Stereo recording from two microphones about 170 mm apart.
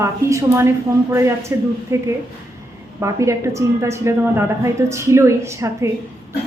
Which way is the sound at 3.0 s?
15° right (ahead or behind).